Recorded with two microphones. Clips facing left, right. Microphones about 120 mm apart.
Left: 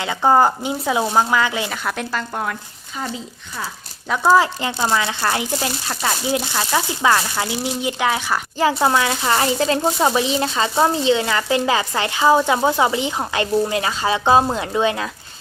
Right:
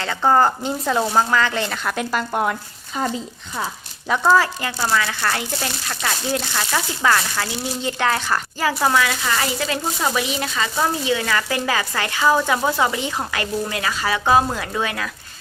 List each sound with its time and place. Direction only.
0.0 s speech: 15° left (ahead or behind)
2.1 s speech: 20° right (ahead or behind)
4.1 s speech: 5° left (ahead or behind)
4.4 s speech: 20° left (ahead or behind)
8.5 s speech: 25° left (ahead or behind)